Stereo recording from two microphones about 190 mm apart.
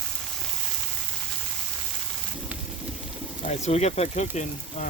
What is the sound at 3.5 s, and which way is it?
Speech, 35° left (ahead or behind).